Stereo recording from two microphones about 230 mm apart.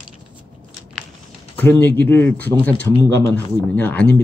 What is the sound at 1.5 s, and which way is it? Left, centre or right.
Speech, centre.